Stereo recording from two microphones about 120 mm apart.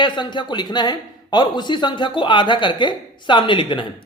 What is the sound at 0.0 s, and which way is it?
Speech, 40° left (ahead or behind).